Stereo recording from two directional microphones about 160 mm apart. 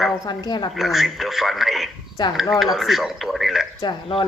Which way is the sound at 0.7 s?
Centre (ahead or behind).